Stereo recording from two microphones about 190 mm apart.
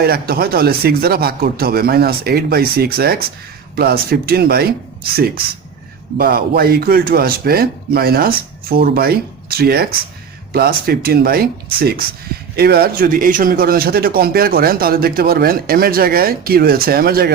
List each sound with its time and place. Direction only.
0.0 s a man's voice: 55° right (ahead or behind)